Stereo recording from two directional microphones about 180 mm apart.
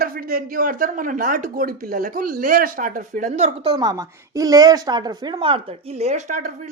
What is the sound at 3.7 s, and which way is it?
Speech, 20° right (ahead or behind).